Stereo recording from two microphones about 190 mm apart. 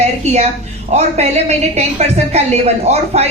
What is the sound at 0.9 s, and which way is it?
Speech, 35° right (ahead or behind).